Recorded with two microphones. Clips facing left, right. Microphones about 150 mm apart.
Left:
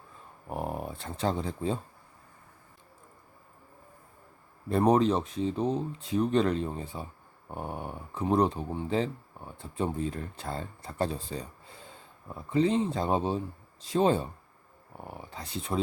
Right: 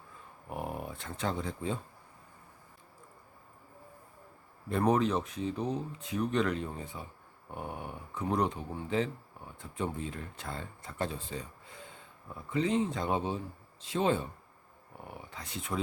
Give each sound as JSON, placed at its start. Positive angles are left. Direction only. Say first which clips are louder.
{"t": 0.4, "sound": "speech", "louder": "left 4 dB", "side_deg": 35}
{"t": 4.8, "sound": "speech", "louder": "left 4 dB", "side_deg": 30}
{"t": 15.3, "sound": "speech", "louder": "left 4 dB", "side_deg": 35}